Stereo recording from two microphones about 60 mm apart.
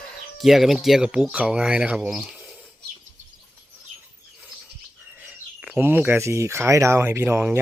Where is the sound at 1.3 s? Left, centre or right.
Right.